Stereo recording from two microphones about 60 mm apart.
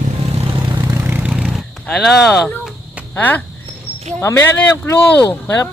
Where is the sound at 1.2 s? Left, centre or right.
Centre.